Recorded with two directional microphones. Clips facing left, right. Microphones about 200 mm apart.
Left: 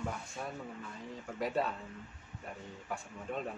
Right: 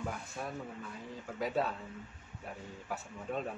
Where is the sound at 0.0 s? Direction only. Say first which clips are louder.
Even; 5° right (ahead or behind).